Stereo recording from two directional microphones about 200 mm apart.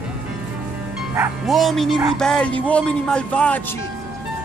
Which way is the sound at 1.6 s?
Centre (ahead or behind).